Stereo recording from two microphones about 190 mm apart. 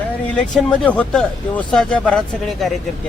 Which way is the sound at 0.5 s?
5° left (ahead or behind).